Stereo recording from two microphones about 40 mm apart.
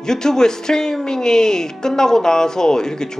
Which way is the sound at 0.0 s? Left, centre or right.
Centre.